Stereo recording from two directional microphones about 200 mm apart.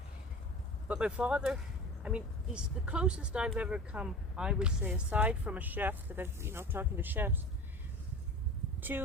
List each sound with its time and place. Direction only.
0.9 s speech: 5° right (ahead or behind)
8.9 s speech: 10° right (ahead or behind)